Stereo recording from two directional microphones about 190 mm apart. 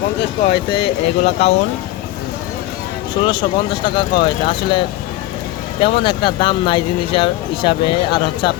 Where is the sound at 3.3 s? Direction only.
25° left (ahead or behind).